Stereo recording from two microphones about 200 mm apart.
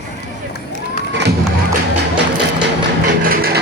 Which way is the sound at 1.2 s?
55° right (ahead or behind).